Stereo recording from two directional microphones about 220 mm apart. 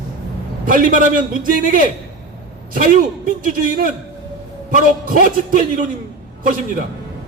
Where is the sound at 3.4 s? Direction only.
40° right (ahead or behind).